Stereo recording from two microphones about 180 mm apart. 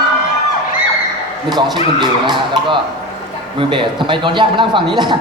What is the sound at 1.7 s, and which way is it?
A man's voice, 25° right (ahead or behind).